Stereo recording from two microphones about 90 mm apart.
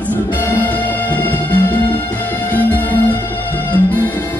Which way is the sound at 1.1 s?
20° left (ahead or behind).